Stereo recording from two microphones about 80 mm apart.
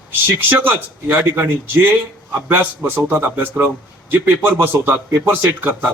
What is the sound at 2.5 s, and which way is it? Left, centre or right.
A man's voice, right.